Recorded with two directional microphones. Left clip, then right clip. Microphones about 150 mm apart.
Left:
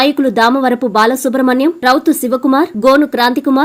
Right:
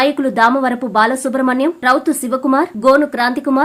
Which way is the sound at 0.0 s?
15° left (ahead or behind).